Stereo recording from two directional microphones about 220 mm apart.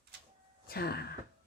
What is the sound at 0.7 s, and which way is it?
Speech, 45° left (ahead or behind).